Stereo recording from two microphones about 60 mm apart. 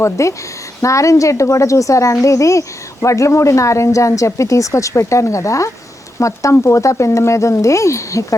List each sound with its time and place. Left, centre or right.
0.0 s speech: left